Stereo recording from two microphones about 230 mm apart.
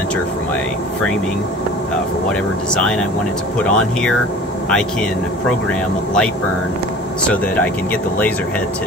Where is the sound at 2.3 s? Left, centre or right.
Centre.